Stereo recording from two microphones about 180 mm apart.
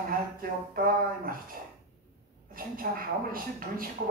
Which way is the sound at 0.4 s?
55° right (ahead or behind).